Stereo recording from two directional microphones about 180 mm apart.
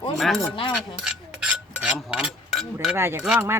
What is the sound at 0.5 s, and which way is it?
Speech, 30° left (ahead or behind).